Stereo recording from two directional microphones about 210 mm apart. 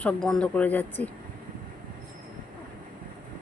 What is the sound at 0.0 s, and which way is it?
Speech, 5° left (ahead or behind).